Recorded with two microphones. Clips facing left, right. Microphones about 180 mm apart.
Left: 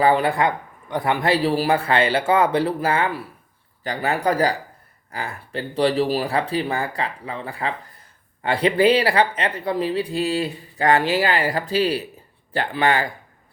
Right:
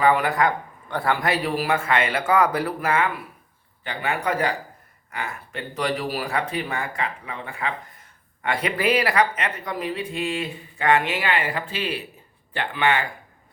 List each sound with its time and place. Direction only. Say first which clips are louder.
0.0 s speech: left 2 dB; 30° left (ahead or behind)